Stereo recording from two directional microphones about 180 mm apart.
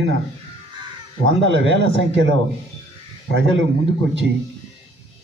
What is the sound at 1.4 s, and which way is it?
Speech, 90° right.